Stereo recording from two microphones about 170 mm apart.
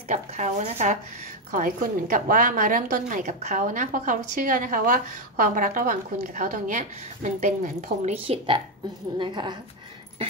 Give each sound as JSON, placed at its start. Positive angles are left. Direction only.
{"t": 0.1, "sound": "a woman's voice", "side_deg": -45}